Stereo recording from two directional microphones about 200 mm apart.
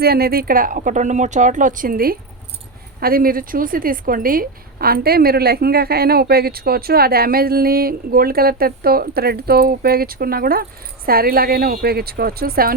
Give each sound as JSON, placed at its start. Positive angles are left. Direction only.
{"t": 0.0, "sound": "a woman's voice", "side_deg": -50}